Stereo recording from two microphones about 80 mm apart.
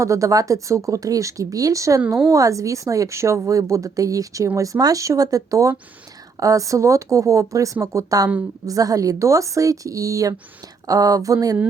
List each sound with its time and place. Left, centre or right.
0.0 s a woman's voice: right